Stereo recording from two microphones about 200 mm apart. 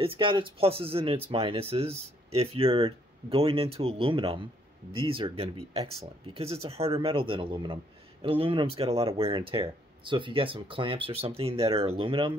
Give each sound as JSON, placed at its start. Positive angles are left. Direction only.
{"t": 0.0, "sound": "speech", "side_deg": -25}